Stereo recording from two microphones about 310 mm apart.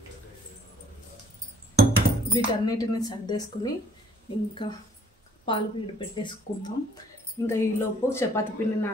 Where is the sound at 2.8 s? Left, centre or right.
Centre.